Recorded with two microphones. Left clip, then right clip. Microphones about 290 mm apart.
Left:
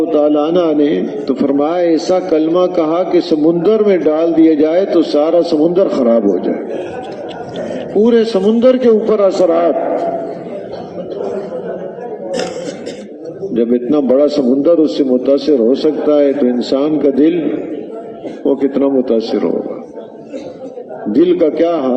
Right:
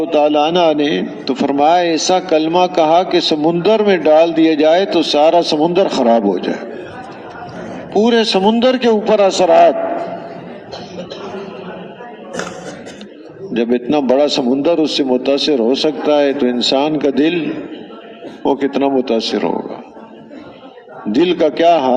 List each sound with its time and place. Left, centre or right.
0.1 s a man's voice: right
8.0 s a man's voice: right
13.5 s a man's voice: right
18.6 s a man's voice: right
21.1 s a man's voice: right